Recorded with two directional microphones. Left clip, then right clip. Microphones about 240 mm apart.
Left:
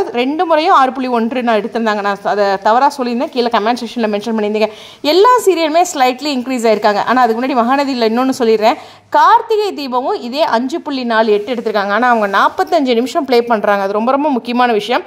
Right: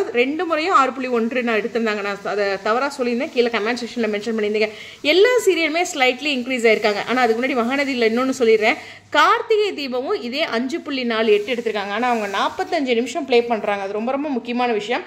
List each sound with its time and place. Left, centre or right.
0.1 s a woman's voice: left